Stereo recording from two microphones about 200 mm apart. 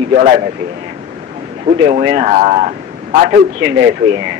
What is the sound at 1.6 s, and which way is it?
A man's voice, 35° right (ahead or behind).